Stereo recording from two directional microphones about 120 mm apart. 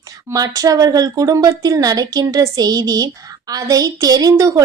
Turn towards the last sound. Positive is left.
turn(degrees=-30)  # may be behind; listen again after turning